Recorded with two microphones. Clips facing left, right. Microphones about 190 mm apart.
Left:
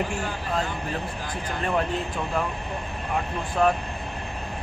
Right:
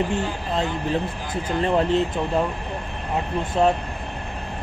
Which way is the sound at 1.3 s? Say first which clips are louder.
Right 5 dB; 25° right (ahead or behind).